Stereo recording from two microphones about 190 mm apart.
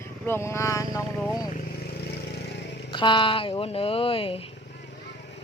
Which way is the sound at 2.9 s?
25° left (ahead or behind).